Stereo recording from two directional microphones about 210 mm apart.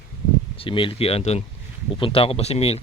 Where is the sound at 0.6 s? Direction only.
25° left (ahead or behind).